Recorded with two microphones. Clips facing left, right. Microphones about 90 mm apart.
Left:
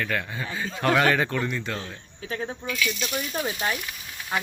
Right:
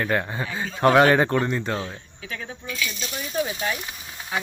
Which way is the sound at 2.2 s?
35° left (ahead or behind).